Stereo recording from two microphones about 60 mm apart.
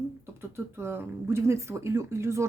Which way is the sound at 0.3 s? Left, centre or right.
Right.